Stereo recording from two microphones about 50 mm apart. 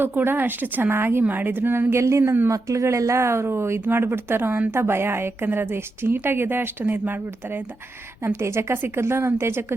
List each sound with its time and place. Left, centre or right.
0.0 s a woman's voice: right
1.2 s a woman's voice: right
1.9 s speech: right
2.5 s a woman's voice: right
8.2 s speech: right